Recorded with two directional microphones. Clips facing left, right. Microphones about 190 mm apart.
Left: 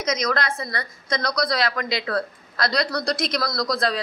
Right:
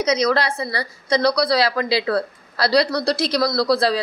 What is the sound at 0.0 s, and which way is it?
Speech, 35° right (ahead or behind).